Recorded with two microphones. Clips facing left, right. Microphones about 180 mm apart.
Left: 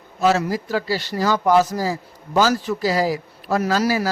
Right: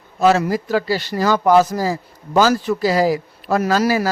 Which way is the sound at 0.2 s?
55° right (ahead or behind).